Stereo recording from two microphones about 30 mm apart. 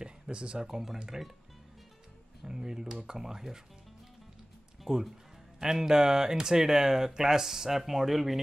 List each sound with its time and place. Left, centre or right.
0.0 s a sound: right
0.6 s speech: centre
2.4 s speech: centre
5.6 s speech: centre